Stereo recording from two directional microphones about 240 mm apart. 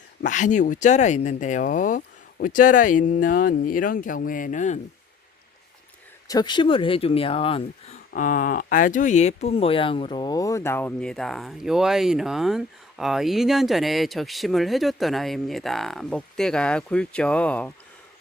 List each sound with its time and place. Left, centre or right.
0.3 s speech: left
6.2 s speech: centre